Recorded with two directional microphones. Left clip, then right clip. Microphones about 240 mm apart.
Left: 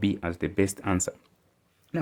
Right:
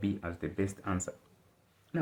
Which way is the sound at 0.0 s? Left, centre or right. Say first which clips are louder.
Left 8 dB; left.